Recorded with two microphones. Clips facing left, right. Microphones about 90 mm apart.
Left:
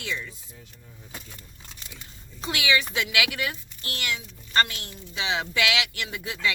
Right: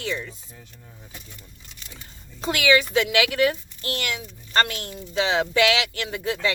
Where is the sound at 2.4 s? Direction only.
45° right (ahead or behind).